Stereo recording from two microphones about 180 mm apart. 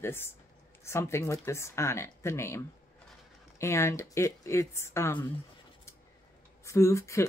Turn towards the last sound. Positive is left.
turn(degrees=15)  # may be behind; listen again after turning